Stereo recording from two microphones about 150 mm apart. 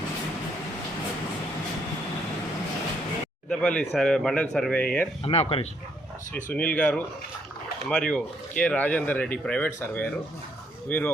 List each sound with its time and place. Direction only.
3.5 s a man's voice: 5° left (ahead or behind)
5.2 s speech: 40° left (ahead or behind)
6.3 s speech: 10° left (ahead or behind)